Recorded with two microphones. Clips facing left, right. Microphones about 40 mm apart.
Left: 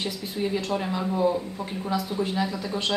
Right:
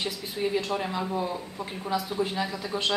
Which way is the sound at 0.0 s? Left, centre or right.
Centre.